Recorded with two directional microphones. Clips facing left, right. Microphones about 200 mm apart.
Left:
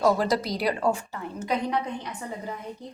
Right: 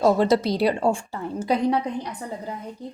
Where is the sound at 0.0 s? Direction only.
25° right (ahead or behind).